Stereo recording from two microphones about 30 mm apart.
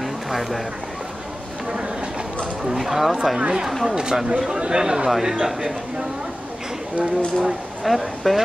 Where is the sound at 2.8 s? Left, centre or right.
Centre.